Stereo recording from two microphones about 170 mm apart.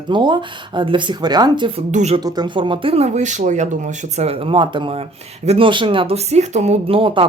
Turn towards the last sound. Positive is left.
turn(degrees=-35)  # may be behind; listen again after turning